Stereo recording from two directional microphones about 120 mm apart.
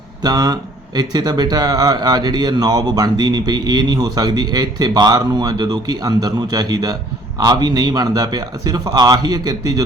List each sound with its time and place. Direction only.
0.2 s speech: 35° right (ahead or behind)